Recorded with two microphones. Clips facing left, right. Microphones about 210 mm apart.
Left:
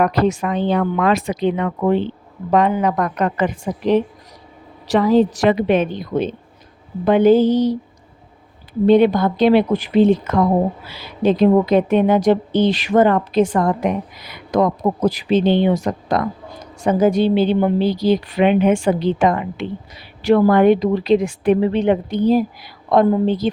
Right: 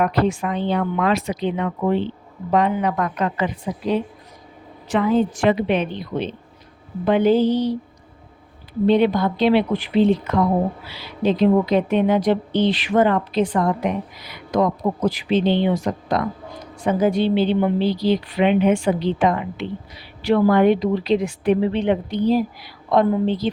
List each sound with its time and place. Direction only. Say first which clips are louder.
0.2 s a woman's voice: left 3 dB; 40° left (ahead or behind)
4.9 s a woman's voice: left 4 dB; 40° left (ahead or behind)
8.9 s a woman's voice: left 4 dB; 50° left (ahead or behind)